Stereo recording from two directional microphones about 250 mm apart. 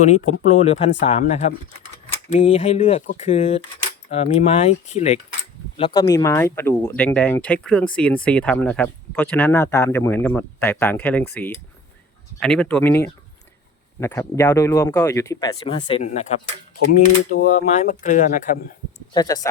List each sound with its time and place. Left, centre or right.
0.4 s speech: left
19.1 s speech: centre